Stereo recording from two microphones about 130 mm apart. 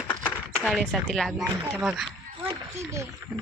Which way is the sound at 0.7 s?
Centre (ahead or behind).